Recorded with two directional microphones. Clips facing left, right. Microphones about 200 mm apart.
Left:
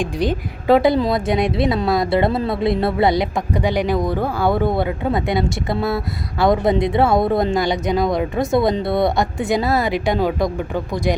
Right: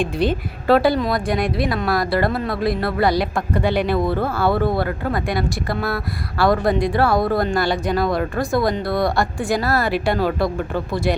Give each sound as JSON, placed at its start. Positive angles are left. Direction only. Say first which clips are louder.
{"t": 0.0, "sound": "speech", "louder": "right 1 dB", "side_deg": 15}